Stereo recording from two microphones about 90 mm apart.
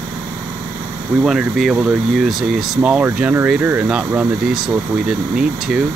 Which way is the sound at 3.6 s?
25° right (ahead or behind).